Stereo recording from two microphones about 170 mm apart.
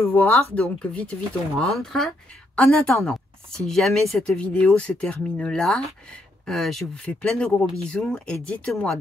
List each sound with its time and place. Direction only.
0.1 s speech: 10° left (ahead or behind)
7.6 s speech: 20° right (ahead or behind)
7.9 s speech: 5° left (ahead or behind)